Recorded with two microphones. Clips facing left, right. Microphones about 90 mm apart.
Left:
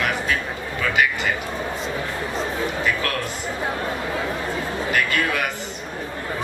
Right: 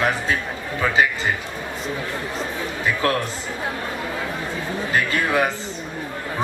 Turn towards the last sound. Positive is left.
turn(degrees=-30)  # may be behind; listen again after turning